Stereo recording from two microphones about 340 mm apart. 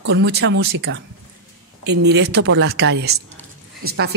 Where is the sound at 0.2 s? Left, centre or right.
Right.